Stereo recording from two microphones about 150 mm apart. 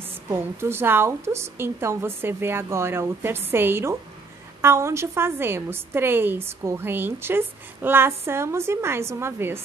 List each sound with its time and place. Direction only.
0.3 s a woman's voice: 15° right (ahead or behind)